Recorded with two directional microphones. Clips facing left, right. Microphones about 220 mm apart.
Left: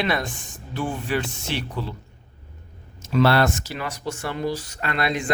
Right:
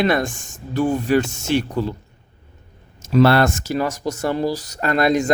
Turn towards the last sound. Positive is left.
turn(degrees=-45)  # may be behind; listen again after turning